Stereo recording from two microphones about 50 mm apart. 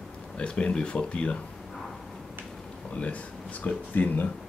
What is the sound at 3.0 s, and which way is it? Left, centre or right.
Speech, left.